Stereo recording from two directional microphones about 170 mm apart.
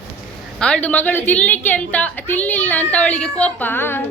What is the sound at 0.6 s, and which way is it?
A woman's voice, 5° left (ahead or behind).